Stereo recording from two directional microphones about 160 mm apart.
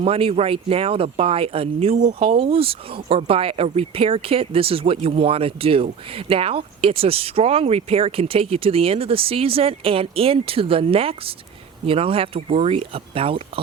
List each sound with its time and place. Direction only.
0.0 s speech: 35° right (ahead or behind)